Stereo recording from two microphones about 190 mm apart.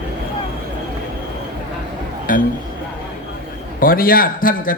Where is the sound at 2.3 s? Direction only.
45° left (ahead or behind).